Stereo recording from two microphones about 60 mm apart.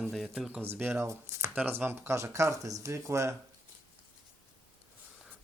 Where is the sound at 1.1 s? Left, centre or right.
Right.